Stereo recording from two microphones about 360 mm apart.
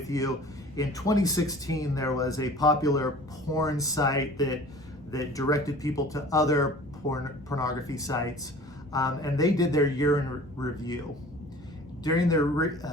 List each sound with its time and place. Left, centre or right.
0.1 s speech: centre
12.0 s speech: centre